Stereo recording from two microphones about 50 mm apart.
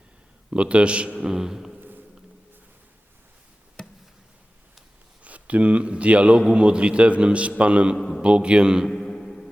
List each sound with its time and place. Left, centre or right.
0.5 s a man's voice: right
3.8 s a sound: centre
5.2 s a man's voice: right
7.9 s a man's voice: centre
8.2 s a man's voice: right
8.9 s a sound: centre